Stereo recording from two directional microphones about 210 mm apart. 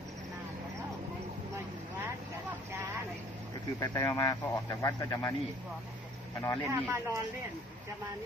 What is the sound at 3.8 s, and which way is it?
Speech, 20° left (ahead or behind).